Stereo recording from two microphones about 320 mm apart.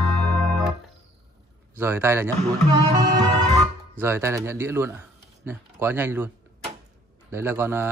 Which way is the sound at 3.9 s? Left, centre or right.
Centre.